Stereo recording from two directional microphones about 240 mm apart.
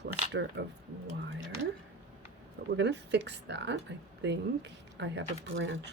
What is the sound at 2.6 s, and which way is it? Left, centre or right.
A woman's voice, right.